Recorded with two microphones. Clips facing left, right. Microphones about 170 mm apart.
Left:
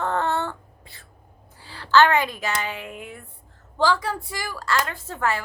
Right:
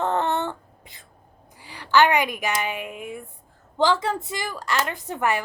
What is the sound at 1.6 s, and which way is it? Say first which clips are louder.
A woman's voice: left 1 dB; 15° right (ahead or behind).